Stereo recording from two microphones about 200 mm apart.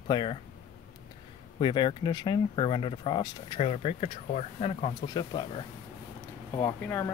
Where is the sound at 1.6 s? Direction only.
25° left (ahead or behind).